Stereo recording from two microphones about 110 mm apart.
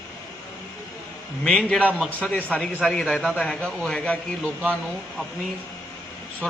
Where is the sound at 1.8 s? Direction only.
15° right (ahead or behind).